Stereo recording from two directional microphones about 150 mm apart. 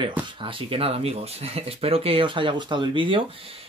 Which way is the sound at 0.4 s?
35° right (ahead or behind).